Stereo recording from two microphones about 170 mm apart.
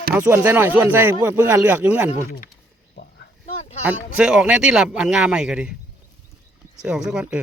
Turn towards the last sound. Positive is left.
turn(degrees=-5)  # may be behind; listen again after turning